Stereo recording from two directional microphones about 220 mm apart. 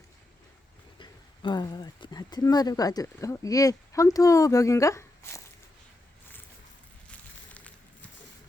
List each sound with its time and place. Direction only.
0.9 s speech: 20° left (ahead or behind)